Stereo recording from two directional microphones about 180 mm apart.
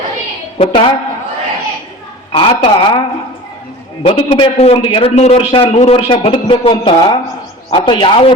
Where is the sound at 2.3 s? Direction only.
30° left (ahead or behind).